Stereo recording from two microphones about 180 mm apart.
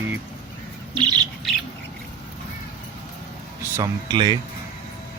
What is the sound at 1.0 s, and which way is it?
Speech, 25° right (ahead or behind).